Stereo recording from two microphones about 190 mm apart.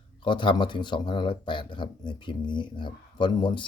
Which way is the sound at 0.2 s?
25° left (ahead or behind).